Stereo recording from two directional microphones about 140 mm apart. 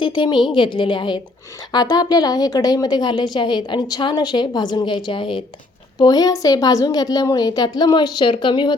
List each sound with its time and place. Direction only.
0.0 s a woman's voice: 35° left (ahead or behind)